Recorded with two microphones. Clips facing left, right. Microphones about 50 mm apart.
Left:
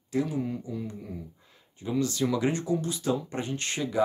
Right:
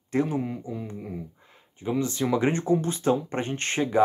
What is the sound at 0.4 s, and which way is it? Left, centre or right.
Speech, right.